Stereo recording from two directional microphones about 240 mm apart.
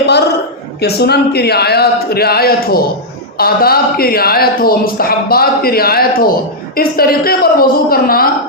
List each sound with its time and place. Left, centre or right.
0.8 s speech: left